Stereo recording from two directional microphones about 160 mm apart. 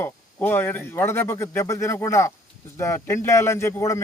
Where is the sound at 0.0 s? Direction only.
15° left (ahead or behind).